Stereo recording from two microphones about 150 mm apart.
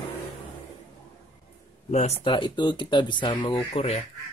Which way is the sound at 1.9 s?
50° left (ahead or behind).